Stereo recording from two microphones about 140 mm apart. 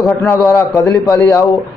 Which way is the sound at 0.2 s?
20° left (ahead or behind).